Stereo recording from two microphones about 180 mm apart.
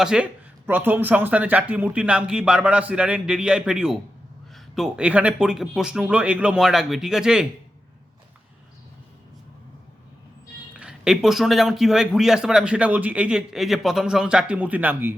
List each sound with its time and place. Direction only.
0.0 s a man's voice: 5° right (ahead or behind)
10.8 s a man's voice: 5° right (ahead or behind)